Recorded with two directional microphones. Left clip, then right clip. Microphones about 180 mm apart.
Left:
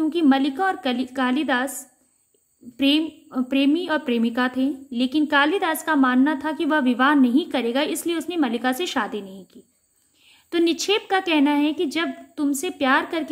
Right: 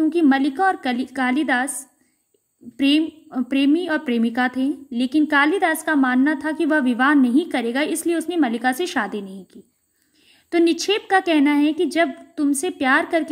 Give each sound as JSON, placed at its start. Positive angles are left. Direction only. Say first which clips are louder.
{"t": 0.0, "sound": "a woman's voice", "louder": "right 2 dB", "side_deg": -20}
{"t": 2.8, "sound": "a woman's voice", "louder": "right 2 dB", "side_deg": -25}